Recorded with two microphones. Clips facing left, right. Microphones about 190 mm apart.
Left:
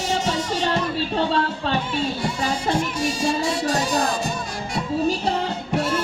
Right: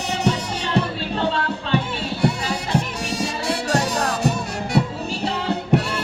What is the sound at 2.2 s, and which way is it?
Music, 65° right (ahead or behind).